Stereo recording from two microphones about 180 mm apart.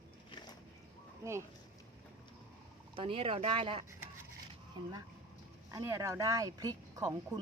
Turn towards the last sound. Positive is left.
turn(degrees=-20)  # may be behind; listen again after turning